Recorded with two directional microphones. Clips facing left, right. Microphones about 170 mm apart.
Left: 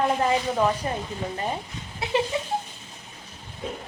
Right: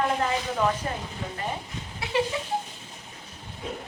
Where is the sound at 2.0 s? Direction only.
20° left (ahead or behind).